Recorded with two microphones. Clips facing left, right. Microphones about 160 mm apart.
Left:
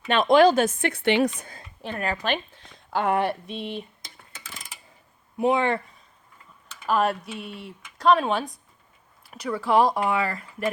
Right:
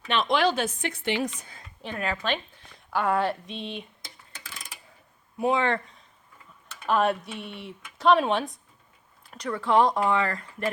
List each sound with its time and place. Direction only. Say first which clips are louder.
0.1 s speech: left 7 dB; 45° left (ahead or behind); by 1.5 s 65° left (ahead or behind)
1.5 s a sound: left 3 dB; 45° left (ahead or behind)
2.0 s speech: left 2 dB; 40° left (ahead or behind)
2.9 s speech: left 2 dB; 20° left (ahead or behind)
3.5 s speech: left 3 dB; 10° left (ahead or behind)
5.4 s speech: left 2 dB; 15° left (ahead or behind)
6.8 s speech: even; centre (ahead or behind)